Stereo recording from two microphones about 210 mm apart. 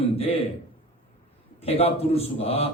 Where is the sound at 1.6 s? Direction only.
30° left (ahead or behind).